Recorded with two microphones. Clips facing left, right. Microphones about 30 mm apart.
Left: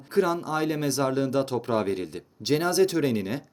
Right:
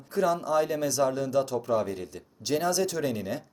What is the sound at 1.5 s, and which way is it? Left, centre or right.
Speech, left.